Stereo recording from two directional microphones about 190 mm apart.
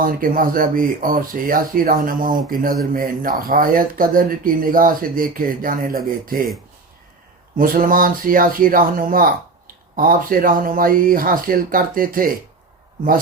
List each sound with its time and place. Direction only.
0.0 s speech: 45° right (ahead or behind)
7.5 s speech: 45° right (ahead or behind)